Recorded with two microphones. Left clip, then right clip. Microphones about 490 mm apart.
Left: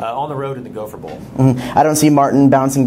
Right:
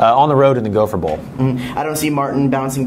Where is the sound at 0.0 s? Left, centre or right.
Right.